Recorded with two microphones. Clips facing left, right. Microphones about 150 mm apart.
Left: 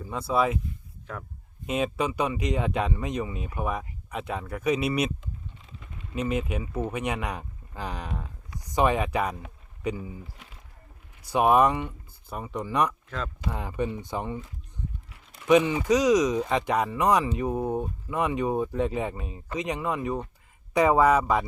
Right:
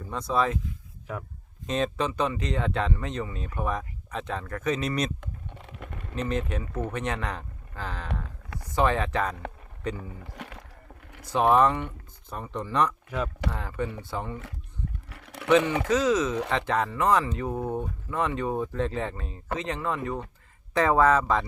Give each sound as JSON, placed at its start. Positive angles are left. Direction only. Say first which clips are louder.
{"t": 0.0, "sound": "speech", "louder": "left 1 dB", "side_deg": 5}
{"t": 1.1, "sound": "speech", "louder": "right 3 dB", "side_deg": -10}
{"t": 1.6, "sound": "speech", "louder": "even", "side_deg": 10}
{"t": 5.2, "sound": "typing", "louder": "right 2 dB", "side_deg": -65}
{"t": 6.1, "sound": "speech", "louder": "left 1 dB", "side_deg": 10}
{"t": 10.0, "sound": "speech", "louder": "even", "side_deg": -70}
{"t": 11.2, "sound": "speech", "louder": "left 1 dB", "side_deg": 10}
{"t": 13.1, "sound": "speech", "louder": "right 3 dB", "side_deg": -10}
{"t": 13.5, "sound": "speech", "louder": "left 2 dB", "side_deg": 15}
{"t": 15.1, "sound": "a sound", "louder": "right 9 dB", "side_deg": -75}
{"t": 15.4, "sound": "speech", "louder": "left 1 dB", "side_deg": 15}